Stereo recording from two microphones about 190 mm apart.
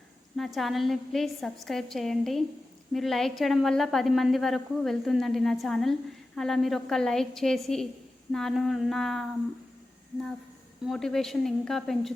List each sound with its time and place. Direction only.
0.3 s a woman's voice: centre (ahead or behind)
10.8 s a woman's voice: centre (ahead or behind)